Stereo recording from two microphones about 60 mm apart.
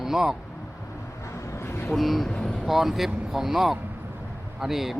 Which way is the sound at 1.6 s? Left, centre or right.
Left.